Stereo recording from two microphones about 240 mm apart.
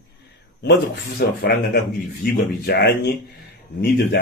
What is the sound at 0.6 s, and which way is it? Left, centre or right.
A man's voice, left.